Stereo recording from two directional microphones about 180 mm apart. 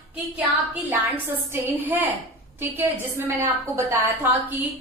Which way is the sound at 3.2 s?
15° right (ahead or behind).